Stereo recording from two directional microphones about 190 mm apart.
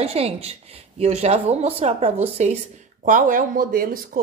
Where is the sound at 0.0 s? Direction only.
30° right (ahead or behind).